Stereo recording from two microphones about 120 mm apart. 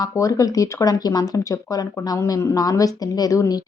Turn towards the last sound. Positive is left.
turn(degrees=30)  # may be behind; listen again after turning